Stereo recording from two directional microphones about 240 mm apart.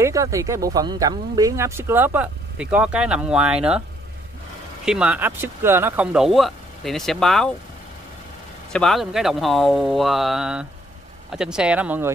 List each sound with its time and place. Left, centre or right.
0.0 s speech: centre
4.8 s speech: centre
8.7 s speech: centre